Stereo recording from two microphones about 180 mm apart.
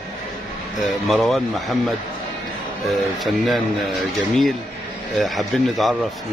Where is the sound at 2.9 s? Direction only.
Centre (ahead or behind).